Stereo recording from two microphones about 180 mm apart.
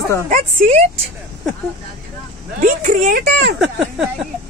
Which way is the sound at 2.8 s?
50° right (ahead or behind).